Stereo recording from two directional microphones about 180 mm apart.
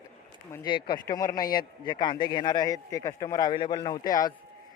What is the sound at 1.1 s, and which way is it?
Speech, 20° left (ahead or behind).